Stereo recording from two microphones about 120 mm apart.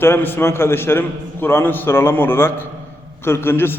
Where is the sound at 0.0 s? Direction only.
20° left (ahead or behind).